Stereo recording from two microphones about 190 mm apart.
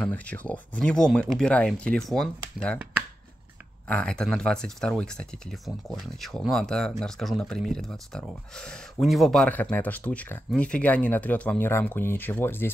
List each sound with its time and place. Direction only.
0.0 s speech: 5° left (ahead or behind)
3.9 s speech: 5° left (ahead or behind)